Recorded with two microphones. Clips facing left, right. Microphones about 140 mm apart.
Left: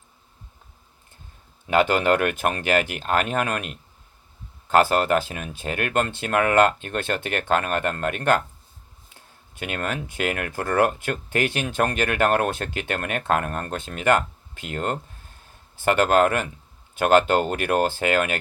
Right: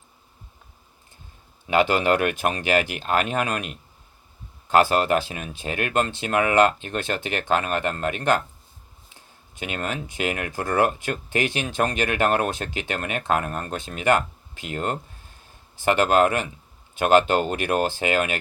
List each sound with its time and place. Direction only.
1.6 s speech: 50° left (ahead or behind)